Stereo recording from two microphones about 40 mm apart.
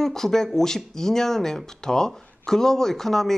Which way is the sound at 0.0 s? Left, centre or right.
Centre.